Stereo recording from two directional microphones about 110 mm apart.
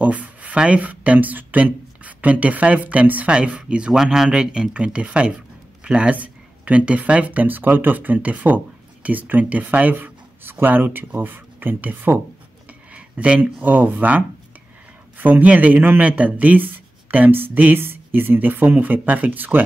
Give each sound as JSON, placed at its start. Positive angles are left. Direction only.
{"t": 0.0, "sound": "speech", "side_deg": -10}